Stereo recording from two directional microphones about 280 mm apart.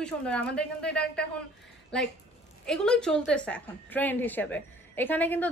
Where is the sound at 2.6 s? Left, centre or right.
Centre.